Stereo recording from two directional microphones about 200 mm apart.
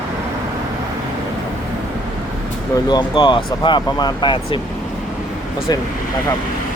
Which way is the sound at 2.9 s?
25° left (ahead or behind).